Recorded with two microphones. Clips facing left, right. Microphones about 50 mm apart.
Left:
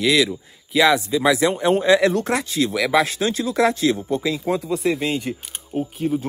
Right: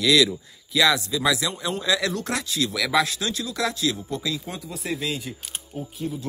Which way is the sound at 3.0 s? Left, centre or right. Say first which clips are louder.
Left 6 dB; left.